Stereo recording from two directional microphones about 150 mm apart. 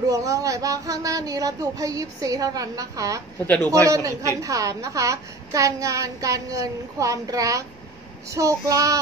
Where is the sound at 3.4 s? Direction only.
15° left (ahead or behind).